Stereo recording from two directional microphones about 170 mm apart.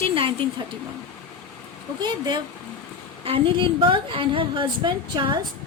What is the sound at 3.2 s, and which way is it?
A woman's voice, 30° right (ahead or behind).